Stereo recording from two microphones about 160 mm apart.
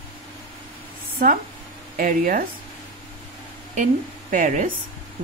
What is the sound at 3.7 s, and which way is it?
A woman's voice, 50° right (ahead or behind).